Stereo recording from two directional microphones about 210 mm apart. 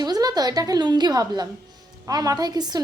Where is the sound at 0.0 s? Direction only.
20° right (ahead or behind).